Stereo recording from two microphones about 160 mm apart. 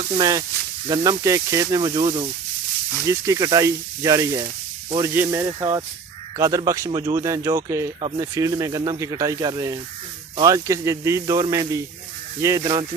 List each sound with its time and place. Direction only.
0.2 s speech: 20° right (ahead or behind)